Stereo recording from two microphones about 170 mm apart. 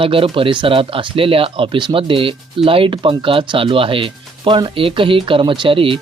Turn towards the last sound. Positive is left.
turn(degrees=-30)  # may be behind; listen again after turning